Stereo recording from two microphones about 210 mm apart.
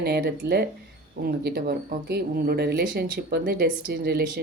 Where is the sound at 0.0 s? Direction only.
50° right (ahead or behind).